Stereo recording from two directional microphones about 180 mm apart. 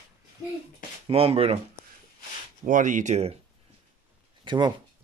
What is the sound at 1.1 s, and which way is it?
Speech, 35° right (ahead or behind).